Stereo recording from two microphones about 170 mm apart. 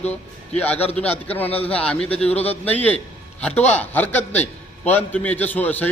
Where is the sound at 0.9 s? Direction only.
10° left (ahead or behind).